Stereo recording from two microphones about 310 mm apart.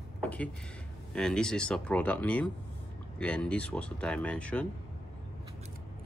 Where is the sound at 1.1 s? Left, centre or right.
Centre.